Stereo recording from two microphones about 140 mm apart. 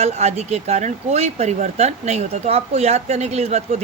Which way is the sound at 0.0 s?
50° right (ahead or behind).